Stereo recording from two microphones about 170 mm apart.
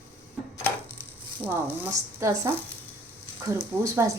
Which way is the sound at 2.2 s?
20° right (ahead or behind).